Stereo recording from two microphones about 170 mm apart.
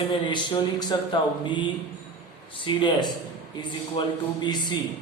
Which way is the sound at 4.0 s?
30° left (ahead or behind).